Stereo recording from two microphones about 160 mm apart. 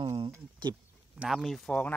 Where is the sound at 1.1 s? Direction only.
Centre (ahead or behind).